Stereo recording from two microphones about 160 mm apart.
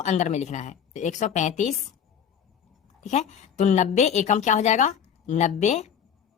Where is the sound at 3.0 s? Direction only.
45° left (ahead or behind).